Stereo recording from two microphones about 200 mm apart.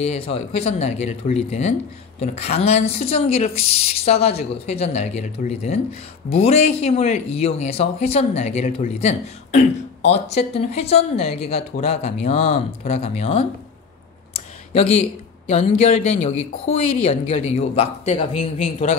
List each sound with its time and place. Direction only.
0.0 s speech: 30° left (ahead or behind)
14.3 s a sound: 30° left (ahead or behind)
15.8 s speech: 30° left (ahead or behind)